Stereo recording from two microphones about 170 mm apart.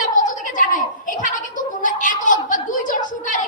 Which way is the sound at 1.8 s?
50° left (ahead or behind).